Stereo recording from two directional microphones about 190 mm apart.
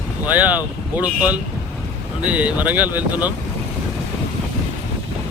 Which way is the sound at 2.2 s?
5° right (ahead or behind).